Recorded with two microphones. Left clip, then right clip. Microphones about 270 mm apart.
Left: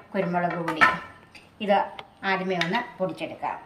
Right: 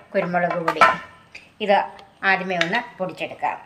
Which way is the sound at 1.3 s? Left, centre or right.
Centre.